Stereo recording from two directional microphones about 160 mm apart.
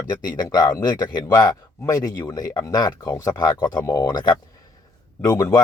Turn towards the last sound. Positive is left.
turn(degrees=20)  # may be behind; listen again after turning